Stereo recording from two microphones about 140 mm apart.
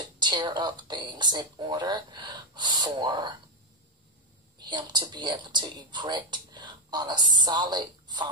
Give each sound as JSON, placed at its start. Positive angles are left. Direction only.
{"t": 0.2, "sound": "a woman's voice", "side_deg": -30}
{"t": 4.6, "sound": "a woman's voice", "side_deg": -30}